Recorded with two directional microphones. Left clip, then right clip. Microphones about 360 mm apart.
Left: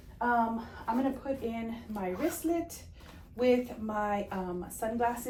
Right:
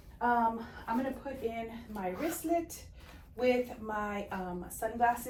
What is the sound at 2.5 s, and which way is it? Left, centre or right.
Speech, centre.